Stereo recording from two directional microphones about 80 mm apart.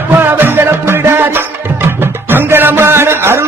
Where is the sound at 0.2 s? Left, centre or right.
Right.